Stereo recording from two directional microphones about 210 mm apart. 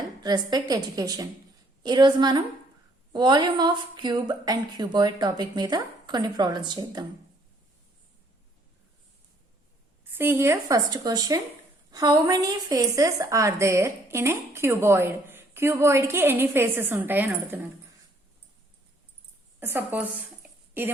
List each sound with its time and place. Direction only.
0.2 s a woman's voice: 20° right (ahead or behind)
10.0 s a woman's voice: 10° right (ahead or behind)
19.5 s a woman's voice: 10° right (ahead or behind)